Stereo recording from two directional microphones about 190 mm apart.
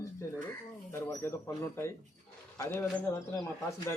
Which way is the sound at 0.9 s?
15° left (ahead or behind).